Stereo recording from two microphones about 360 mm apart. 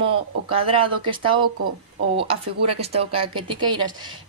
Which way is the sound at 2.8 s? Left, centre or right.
Centre.